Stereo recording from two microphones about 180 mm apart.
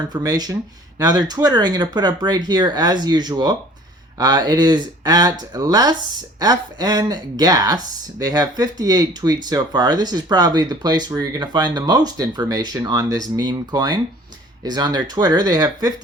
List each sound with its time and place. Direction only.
0.1 s speech: 20° right (ahead or behind)